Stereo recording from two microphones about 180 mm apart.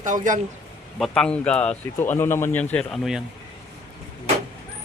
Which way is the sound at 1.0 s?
5° left (ahead or behind).